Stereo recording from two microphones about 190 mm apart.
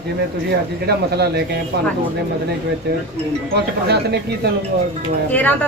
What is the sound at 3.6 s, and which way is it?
Speech, 60° right (ahead or behind).